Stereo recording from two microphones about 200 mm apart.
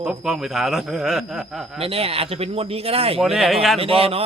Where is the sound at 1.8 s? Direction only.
30° right (ahead or behind).